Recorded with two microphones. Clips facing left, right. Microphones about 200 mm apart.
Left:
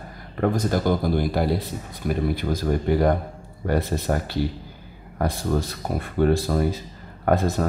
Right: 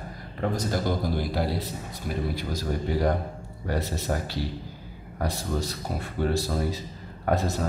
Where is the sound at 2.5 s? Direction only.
55° left (ahead or behind).